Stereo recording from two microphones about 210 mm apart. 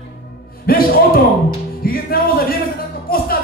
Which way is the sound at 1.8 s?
45° left (ahead or behind).